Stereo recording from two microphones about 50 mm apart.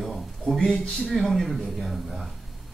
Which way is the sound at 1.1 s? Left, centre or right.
Centre.